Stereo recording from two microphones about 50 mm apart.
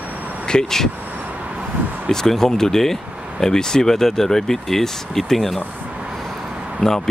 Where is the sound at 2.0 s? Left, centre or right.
Centre.